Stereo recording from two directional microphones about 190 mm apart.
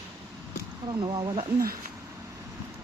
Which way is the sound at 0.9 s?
25° right (ahead or behind).